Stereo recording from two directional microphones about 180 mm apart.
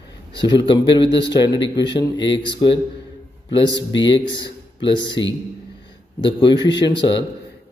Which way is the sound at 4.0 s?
25° left (ahead or behind).